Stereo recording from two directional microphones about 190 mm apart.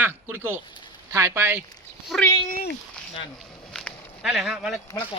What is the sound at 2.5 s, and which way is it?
Speech, 55° left (ahead or behind).